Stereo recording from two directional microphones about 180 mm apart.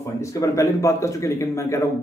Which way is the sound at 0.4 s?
20° left (ahead or behind).